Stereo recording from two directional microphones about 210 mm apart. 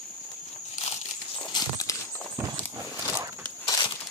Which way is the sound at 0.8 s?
30° left (ahead or behind).